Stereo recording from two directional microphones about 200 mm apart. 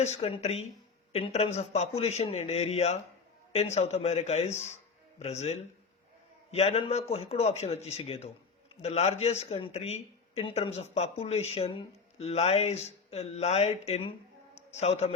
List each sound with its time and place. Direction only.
0.0 s a man's voice: 30° left (ahead or behind)